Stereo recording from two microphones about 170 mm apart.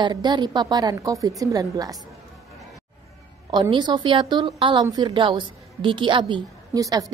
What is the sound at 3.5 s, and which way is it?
Speech, 25° right (ahead or behind).